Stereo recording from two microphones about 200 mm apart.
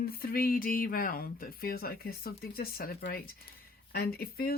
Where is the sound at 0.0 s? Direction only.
45° left (ahead or behind).